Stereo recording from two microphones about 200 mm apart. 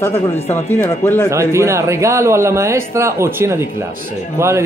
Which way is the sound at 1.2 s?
15° right (ahead or behind).